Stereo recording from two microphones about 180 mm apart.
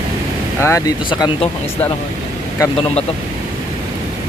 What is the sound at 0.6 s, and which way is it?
Speech, 20° left (ahead or behind).